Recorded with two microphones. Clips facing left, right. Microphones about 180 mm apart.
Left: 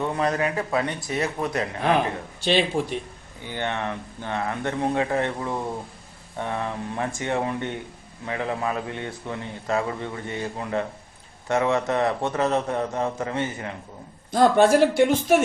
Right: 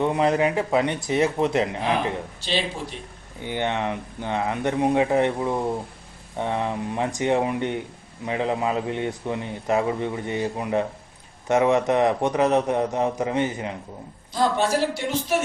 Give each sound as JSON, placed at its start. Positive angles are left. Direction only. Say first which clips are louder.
{"t": 0.0, "sound": "speech", "louder": "right 4 dB", "side_deg": -20}
{"t": 3.4, "sound": "a man's voice", "louder": "right 3 dB", "side_deg": -20}
{"t": 14.3, "sound": "speech", "louder": "left 5 dB", "side_deg": 55}